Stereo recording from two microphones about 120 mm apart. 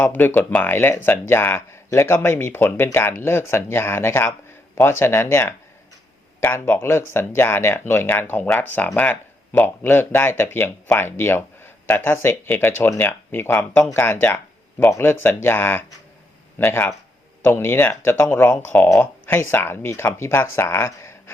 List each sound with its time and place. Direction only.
0.0 s speech: 15° left (ahead or behind)